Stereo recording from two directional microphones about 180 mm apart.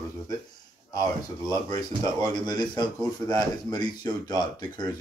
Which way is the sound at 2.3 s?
25° left (ahead or behind).